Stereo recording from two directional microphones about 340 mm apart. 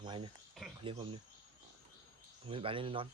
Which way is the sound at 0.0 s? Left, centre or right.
Centre.